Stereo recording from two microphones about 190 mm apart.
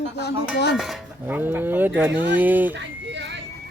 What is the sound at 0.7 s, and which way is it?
Speech, centre (ahead or behind).